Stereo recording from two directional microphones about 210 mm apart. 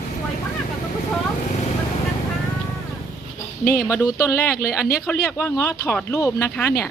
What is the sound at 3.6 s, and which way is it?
Speech, 45° left (ahead or behind).